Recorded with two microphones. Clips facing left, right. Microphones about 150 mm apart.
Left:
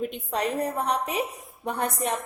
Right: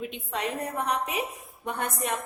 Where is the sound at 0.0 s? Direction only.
40° left (ahead or behind).